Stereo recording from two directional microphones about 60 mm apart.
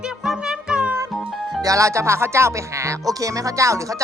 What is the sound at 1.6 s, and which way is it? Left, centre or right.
Speech, right.